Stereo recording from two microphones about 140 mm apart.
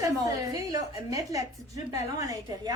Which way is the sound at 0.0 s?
25° right (ahead or behind).